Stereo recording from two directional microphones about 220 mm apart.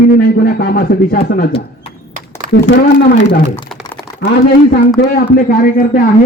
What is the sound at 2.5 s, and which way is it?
Speech, 50° left (ahead or behind).